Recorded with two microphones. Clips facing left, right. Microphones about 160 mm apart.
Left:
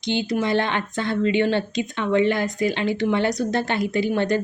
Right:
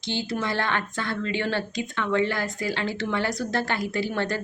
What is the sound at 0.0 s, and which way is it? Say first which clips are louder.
A woman's voice: left 6 dB; 15° left (ahead or behind).